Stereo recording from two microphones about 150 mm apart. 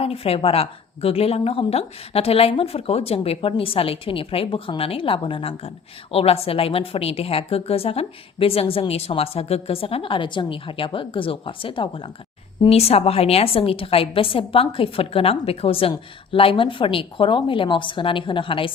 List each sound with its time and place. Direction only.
0.0 s a woman's voice: 40° left (ahead or behind)